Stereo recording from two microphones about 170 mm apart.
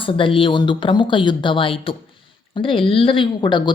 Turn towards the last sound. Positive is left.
turn(degrees=30)  # may be behind; listen again after turning